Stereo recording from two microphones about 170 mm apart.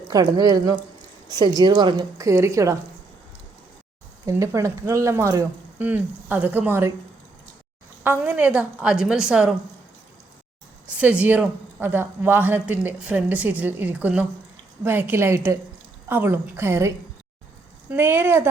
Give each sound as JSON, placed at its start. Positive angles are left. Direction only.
{"t": 0.1, "sound": "a woman's voice", "side_deg": -20}
{"t": 1.3, "sound": "a woman's voice", "side_deg": 20}
{"t": 1.5, "sound": "a woman's voice", "side_deg": -25}
{"t": 4.3, "sound": "a woman's voice", "side_deg": -20}
{"t": 8.0, "sound": "a woman's voice", "side_deg": -10}
{"t": 10.8, "sound": "a woman's voice", "side_deg": -10}